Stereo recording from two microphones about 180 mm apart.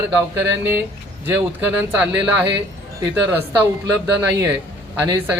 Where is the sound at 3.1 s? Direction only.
10° right (ahead or behind).